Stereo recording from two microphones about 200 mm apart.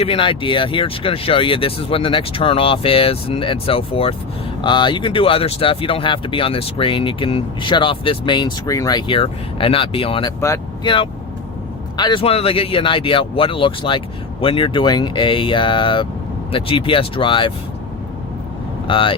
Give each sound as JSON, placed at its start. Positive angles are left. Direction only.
{"t": 0.0, "sound": "speech", "side_deg": 25}
{"t": 11.9, "sound": "speech", "side_deg": 25}
{"t": 18.9, "sound": "speech", "side_deg": 25}